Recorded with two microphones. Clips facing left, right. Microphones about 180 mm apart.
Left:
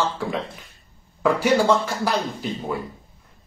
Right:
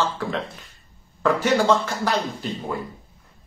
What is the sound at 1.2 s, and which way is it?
Speech, 10° left (ahead or behind).